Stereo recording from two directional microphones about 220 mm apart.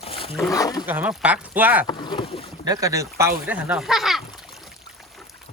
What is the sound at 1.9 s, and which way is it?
Rowboat, 20° left (ahead or behind).